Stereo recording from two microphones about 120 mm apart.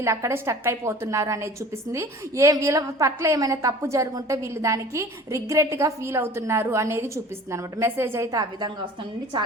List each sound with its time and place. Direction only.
0.0 s a woman's voice: 25° right (ahead or behind)